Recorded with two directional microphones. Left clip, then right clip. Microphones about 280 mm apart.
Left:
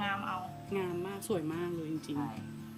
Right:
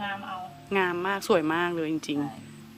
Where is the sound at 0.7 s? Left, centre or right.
Centre.